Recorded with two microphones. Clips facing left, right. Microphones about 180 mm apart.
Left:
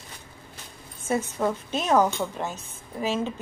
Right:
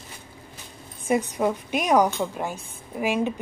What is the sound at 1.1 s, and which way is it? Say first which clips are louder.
A woman's voice: right 3 dB; 15° right (ahead or behind).